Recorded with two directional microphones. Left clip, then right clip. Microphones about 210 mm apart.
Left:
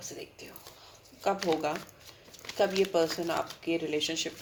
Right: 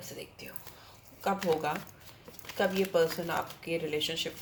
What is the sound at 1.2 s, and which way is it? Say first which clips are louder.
Speech: left 1 dB; 30° left (ahead or behind).